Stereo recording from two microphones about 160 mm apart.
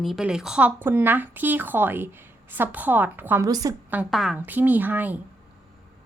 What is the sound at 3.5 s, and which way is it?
Speech, 25° right (ahead or behind).